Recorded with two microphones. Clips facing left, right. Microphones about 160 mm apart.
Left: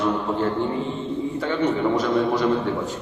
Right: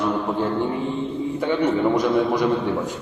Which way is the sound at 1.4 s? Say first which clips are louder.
Right 3 dB; 15° right (ahead or behind).